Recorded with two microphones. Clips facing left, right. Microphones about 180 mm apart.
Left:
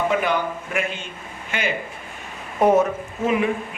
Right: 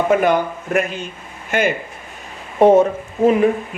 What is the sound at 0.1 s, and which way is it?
A man's voice, 45° right (ahead or behind).